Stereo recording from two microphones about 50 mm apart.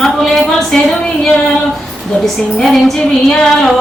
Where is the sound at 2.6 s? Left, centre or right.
Centre.